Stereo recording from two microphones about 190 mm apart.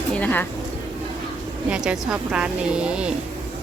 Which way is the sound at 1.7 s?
5° right (ahead or behind).